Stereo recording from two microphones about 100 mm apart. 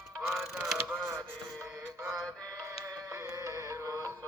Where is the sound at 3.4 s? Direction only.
30° right (ahead or behind).